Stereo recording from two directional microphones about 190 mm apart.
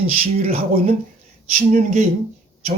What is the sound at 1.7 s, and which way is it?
Speech, 40° right (ahead or behind).